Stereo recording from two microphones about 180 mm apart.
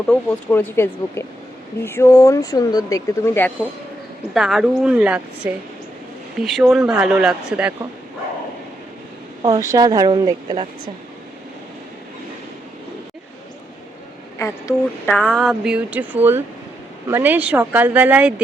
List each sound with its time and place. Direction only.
0.1 s speech: 10° left (ahead or behind)
4.4 s speech: centre (ahead or behind)
9.4 s speech: 20° right (ahead or behind)
14.3 s speech: 15° left (ahead or behind); by 18.4 s 5° right (ahead or behind)